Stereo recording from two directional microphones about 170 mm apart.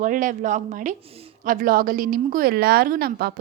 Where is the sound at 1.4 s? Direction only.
55° right (ahead or behind).